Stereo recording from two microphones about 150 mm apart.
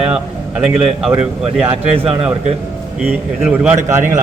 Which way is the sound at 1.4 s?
40° right (ahead or behind).